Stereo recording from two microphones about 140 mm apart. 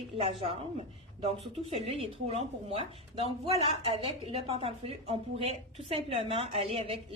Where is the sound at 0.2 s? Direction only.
45° right (ahead or behind).